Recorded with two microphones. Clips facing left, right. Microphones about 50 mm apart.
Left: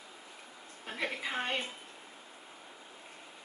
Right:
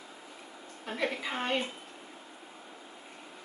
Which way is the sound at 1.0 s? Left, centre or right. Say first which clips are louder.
Right 2 dB; centre.